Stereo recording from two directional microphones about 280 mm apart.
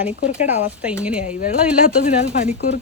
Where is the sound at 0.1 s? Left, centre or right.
Left.